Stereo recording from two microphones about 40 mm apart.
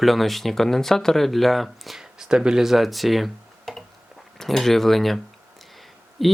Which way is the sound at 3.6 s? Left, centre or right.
Centre.